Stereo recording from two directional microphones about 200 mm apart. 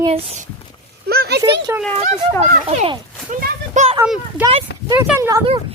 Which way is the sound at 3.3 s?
40° right (ahead or behind).